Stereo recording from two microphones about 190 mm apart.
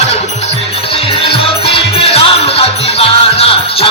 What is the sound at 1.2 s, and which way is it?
Music, 30° left (ahead or behind).